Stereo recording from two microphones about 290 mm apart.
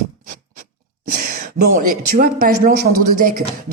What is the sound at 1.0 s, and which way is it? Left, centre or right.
A woman's voice, right.